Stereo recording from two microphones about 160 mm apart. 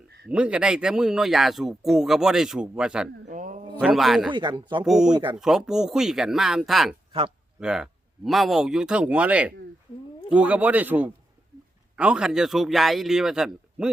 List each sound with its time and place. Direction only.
0.3 s speech: 5° right (ahead or behind)
3.2 s a sound: 55° right (ahead or behind)
3.8 s speech: 5° right (ahead or behind)
4.3 s speech: 30° right (ahead or behind)
4.9 s speech: 5° right (ahead or behind)
7.1 s speech: 35° right (ahead or behind)
7.6 s speech: 5° right (ahead or behind)